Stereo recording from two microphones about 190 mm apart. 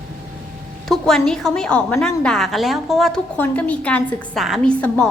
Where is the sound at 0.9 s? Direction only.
Centre (ahead or behind).